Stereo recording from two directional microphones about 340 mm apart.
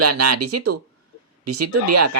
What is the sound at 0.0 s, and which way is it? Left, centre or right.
Speech, right.